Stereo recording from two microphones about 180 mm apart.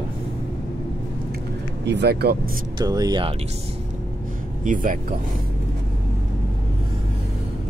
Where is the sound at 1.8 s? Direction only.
65° right (ahead or behind).